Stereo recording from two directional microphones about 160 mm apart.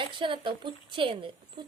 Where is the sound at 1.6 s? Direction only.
30° right (ahead or behind).